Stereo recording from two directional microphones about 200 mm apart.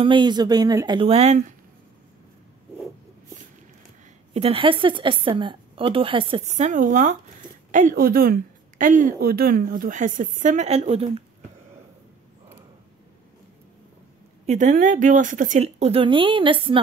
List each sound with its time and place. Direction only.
0.0 s speech: 25° right (ahead or behind)
4.3 s speech: 30° right (ahead or behind)
14.4 s speech: 35° right (ahead or behind)